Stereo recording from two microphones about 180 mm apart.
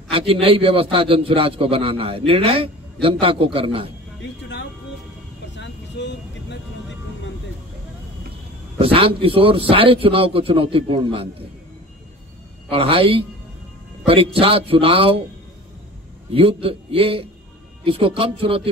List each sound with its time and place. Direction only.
0.1 s a man's voice: 30° right (ahead or behind)
5.6 s vehicle: 75° left (ahead or behind)
8.7 s a man's voice: 30° right (ahead or behind)
12.7 s a man's voice: 30° right (ahead or behind)
16.3 s a man's voice: 30° right (ahead or behind)